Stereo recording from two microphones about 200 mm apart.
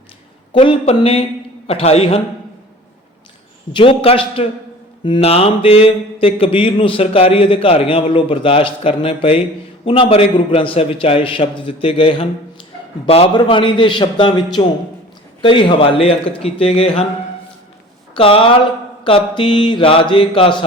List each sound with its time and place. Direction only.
0.5 s a man's voice: 30° left (ahead or behind)
3.7 s speech: 25° left (ahead or behind)
18.1 s speech: 25° left (ahead or behind)